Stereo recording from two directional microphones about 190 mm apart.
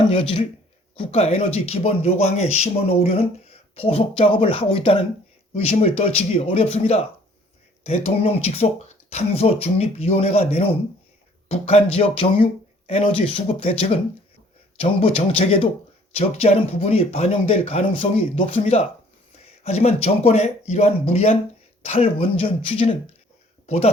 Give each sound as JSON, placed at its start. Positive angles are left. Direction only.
{"t": 0.1, "sound": "speech", "side_deg": 30}